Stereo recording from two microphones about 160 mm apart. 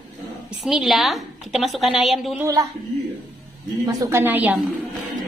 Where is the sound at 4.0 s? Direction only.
15° right (ahead or behind).